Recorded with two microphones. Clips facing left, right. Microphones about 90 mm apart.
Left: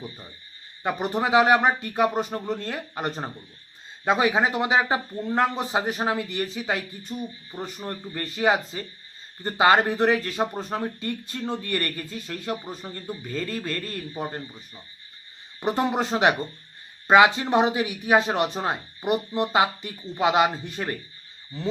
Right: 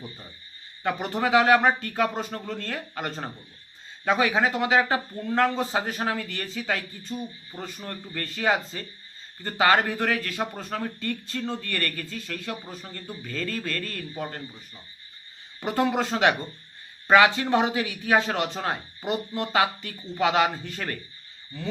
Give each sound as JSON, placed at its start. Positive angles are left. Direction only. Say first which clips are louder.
{"t": 0.8, "sound": "a man's voice", "louder": "left 1 dB", "side_deg": 15}
{"t": 15.6, "sound": "a man's voice", "louder": "left 1 dB", "side_deg": 20}